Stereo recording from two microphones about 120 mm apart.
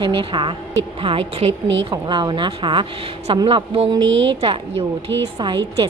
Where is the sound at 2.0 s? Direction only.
40° right (ahead or behind).